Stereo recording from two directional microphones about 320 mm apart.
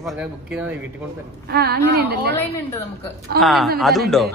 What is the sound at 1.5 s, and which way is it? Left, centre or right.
Speech, right.